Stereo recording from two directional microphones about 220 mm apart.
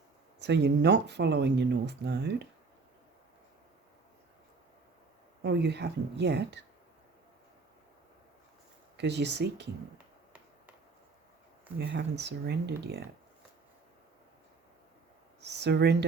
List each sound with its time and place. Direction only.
0.3 s speech: 50° right (ahead or behind)
5.4 s speech: 50° right (ahead or behind)
9.0 s speech: 50° right (ahead or behind)
11.8 s speech: 50° right (ahead or behind)
15.4 s speech: 50° right (ahead or behind)